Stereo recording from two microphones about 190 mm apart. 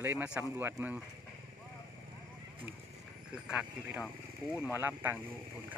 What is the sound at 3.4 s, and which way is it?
Speech, 5° right (ahead or behind).